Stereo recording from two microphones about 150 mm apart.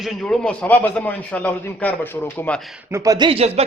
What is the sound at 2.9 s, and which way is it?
Speech, 20° right (ahead or behind).